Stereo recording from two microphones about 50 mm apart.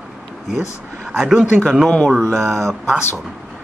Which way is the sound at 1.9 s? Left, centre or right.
Centre.